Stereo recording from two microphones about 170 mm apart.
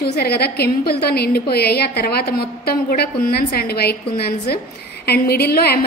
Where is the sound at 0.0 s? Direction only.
65° left (ahead or behind).